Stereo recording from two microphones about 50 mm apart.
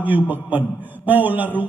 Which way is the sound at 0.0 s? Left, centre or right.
Right.